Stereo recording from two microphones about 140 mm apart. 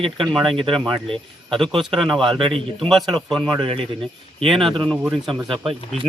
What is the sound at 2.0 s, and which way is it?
Speech, centre (ahead or behind).